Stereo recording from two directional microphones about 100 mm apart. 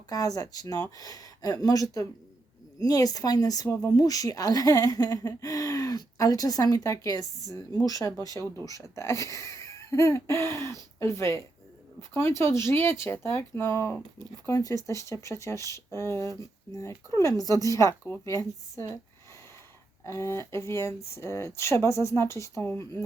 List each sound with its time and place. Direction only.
0.1 s speech: 40° left (ahead or behind)
20.1 s speech: 25° left (ahead or behind)